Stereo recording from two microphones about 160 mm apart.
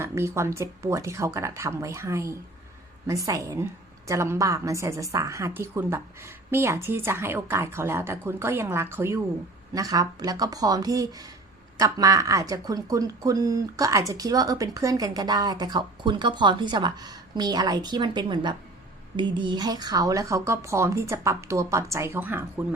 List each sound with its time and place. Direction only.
0.0 s a woman's voice: 15° right (ahead or behind)